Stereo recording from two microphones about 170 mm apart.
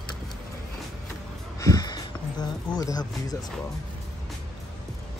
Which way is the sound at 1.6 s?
20° left (ahead or behind).